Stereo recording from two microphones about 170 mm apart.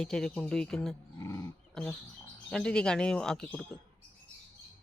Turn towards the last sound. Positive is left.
turn(degrees=5)  # may be behind; listen again after turning